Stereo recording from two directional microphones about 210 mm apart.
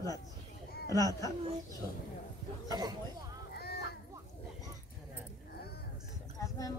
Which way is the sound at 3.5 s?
50° left (ahead or behind).